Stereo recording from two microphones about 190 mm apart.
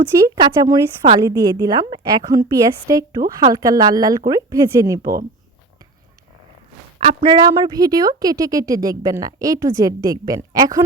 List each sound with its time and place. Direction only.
0.3 s a woman's voice: 20° right (ahead or behind)
7.0 s a woman's voice: 25° right (ahead or behind)